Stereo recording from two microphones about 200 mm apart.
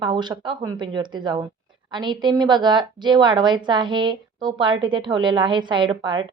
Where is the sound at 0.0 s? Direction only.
20° right (ahead or behind).